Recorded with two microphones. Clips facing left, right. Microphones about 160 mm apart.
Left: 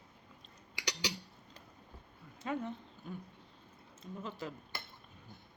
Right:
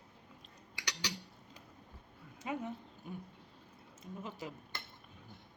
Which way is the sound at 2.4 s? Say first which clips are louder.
Left 2 dB; 10° right (ahead or behind).